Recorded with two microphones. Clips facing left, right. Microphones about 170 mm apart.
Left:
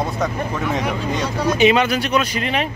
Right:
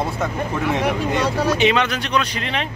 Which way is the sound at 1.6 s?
5° left (ahead or behind).